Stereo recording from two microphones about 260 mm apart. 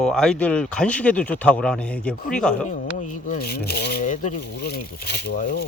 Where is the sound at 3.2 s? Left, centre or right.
Left.